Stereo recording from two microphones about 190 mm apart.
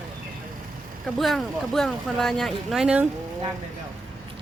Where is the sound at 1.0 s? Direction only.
Centre (ahead or behind).